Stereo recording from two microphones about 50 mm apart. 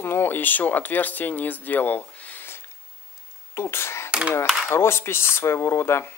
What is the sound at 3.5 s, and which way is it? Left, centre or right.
Speech, left.